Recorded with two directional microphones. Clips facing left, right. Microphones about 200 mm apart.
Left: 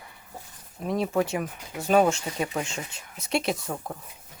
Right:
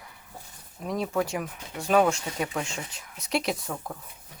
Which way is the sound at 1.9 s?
30° left (ahead or behind).